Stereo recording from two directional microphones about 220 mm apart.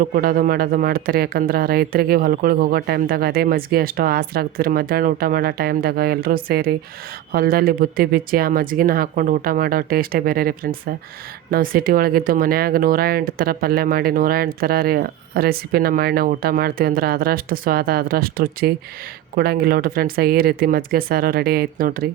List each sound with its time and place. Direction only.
0.0 s speech: 40° right (ahead or behind)